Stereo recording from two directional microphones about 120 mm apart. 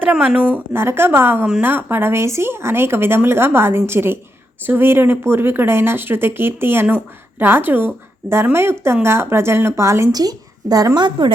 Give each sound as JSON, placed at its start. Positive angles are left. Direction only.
{"t": 0.0, "sound": "a woman's voice", "side_deg": -10}